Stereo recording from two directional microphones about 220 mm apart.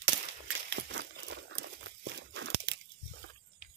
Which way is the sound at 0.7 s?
50° right (ahead or behind).